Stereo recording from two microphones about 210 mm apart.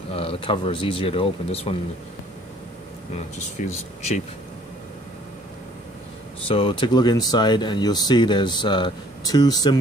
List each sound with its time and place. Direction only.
0.1 s speech: 25° left (ahead or behind)
3.1 s speech: 30° left (ahead or behind)
6.4 s speech: 25° left (ahead or behind)